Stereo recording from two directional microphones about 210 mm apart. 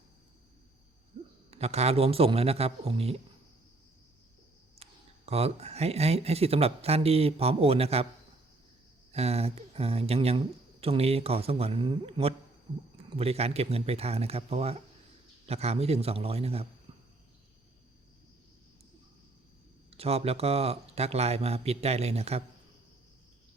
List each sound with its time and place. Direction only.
1.5 s speech: 30° right (ahead or behind)
4.8 s speech: 30° right (ahead or behind)
9.1 s speech: 30° right (ahead or behind)
19.9 s speech: 30° right (ahead or behind)